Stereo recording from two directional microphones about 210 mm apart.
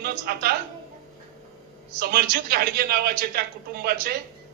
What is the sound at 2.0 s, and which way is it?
A man's voice, 45° right (ahead or behind).